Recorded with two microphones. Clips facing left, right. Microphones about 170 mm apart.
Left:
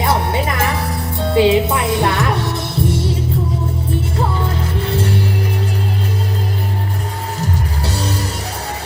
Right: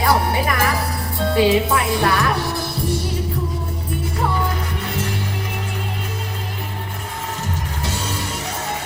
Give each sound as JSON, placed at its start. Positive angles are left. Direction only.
{"t": 0.0, "sound": "music", "side_deg": 20}
{"t": 1.3, "sound": "speech", "side_deg": 20}